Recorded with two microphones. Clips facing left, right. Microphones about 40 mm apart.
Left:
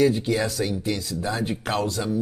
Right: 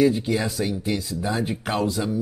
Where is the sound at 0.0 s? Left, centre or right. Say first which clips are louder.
Even; centre.